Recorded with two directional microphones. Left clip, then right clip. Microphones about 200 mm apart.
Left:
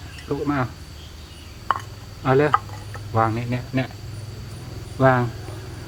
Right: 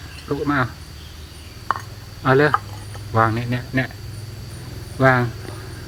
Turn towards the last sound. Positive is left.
turn(degrees=-5)  # may be behind; listen again after turning